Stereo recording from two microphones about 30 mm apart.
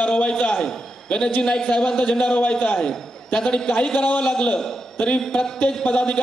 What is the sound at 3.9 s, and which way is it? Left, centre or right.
A man's voice, left.